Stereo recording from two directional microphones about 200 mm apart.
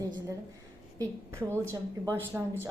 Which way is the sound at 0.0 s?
15° right (ahead or behind).